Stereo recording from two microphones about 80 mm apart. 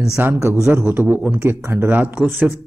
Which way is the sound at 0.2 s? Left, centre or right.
Right.